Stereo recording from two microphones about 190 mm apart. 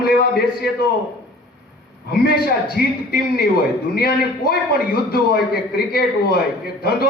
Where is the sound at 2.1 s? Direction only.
50° left (ahead or behind).